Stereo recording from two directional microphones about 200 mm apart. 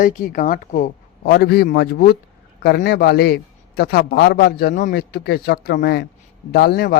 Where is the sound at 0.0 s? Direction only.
40° left (ahead or behind).